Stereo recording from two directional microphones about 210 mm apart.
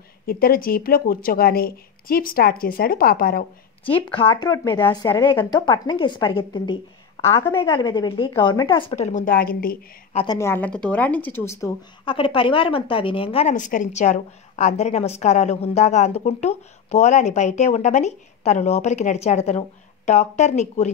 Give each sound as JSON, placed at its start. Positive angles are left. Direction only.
{"t": 0.3, "sound": "a woman's voice", "side_deg": 45}
{"t": 3.8, "sound": "a woman's voice", "side_deg": 25}
{"t": 10.1, "sound": "speech", "side_deg": 20}
{"t": 12.0, "sound": "a woman's voice", "side_deg": 25}